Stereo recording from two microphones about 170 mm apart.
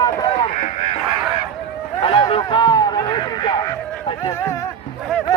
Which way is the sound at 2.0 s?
30° left (ahead or behind).